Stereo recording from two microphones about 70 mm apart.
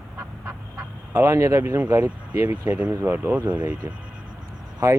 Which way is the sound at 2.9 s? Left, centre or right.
Right.